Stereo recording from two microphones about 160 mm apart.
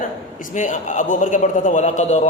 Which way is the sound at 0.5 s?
50° left (ahead or behind).